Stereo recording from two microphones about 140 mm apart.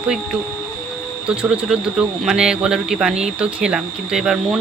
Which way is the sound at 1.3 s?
5° right (ahead or behind).